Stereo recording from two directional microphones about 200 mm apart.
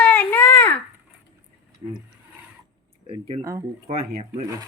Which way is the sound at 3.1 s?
30° right (ahead or behind).